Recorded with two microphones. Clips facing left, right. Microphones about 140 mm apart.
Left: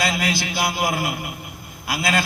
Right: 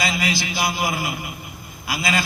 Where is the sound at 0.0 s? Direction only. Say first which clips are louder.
Left 1 dB; 55° left (ahead or behind).